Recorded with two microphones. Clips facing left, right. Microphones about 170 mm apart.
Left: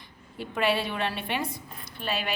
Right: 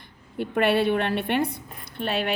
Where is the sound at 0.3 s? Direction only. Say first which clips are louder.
Right 5 dB; 55° right (ahead or behind).